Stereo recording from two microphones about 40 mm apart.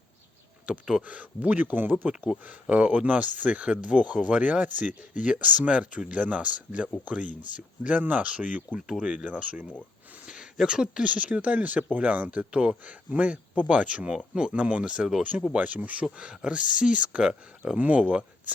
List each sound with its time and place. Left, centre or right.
0.6 s speech: right
1.0 s speech: right
2.4 s speech: right
9.0 s speech: centre
9.2 s speech: right
10.2 s a sound: centre
10.7 s speech: centre
11.0 s speech: right
14.6 s speech: right
16.5 s speech: right
17.7 s speech: right
18.0 s speech: right